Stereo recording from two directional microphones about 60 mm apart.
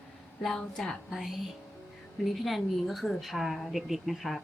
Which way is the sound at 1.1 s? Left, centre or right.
Centre.